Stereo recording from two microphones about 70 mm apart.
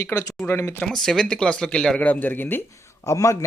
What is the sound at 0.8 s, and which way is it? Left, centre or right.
Speech, centre.